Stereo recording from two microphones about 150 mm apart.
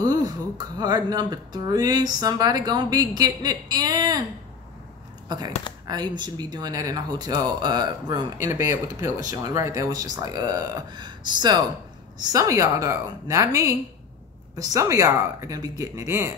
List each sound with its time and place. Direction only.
0.0 s a sound: 25° right (ahead or behind)
0.7 s speech: 25° right (ahead or behind)
5.3 s speech: 30° right (ahead or behind)